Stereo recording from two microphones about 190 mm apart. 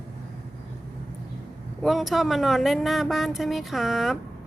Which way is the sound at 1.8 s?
Centre (ahead or behind).